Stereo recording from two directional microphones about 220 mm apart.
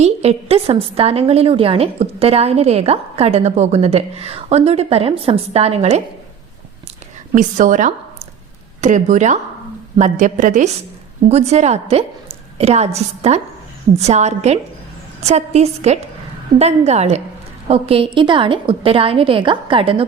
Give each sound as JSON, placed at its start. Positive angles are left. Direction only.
{"t": 0.0, "sound": "a woman's voice", "side_deg": -30}
{"t": 7.3, "sound": "a woman's voice", "side_deg": -35}